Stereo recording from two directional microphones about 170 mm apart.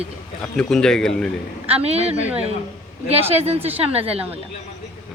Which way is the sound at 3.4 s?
35° right (ahead or behind).